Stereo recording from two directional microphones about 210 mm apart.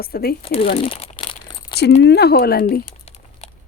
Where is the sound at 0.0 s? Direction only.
45° left (ahead or behind).